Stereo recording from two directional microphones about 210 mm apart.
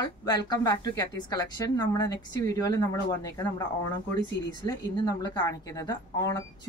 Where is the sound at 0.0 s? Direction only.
20° left (ahead or behind).